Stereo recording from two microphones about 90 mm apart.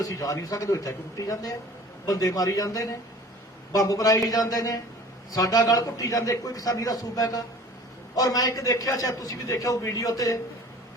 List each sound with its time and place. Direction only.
0.0 s a man's voice: 40° left (ahead or behind)